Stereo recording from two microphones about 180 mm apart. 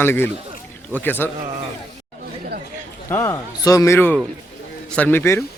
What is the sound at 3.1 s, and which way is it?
Speech, 15° left (ahead or behind).